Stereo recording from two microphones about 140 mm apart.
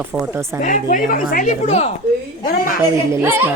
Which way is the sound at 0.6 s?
75° left (ahead or behind).